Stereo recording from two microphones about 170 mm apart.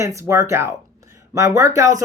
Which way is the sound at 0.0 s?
15° right (ahead or behind).